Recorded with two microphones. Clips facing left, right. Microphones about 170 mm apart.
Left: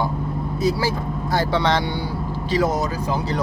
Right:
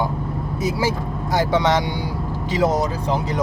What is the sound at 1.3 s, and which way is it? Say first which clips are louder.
Speech: right 2 dB; 20° right (ahead or behind).